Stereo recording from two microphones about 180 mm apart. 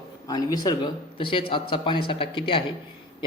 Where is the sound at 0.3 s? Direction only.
20° left (ahead or behind).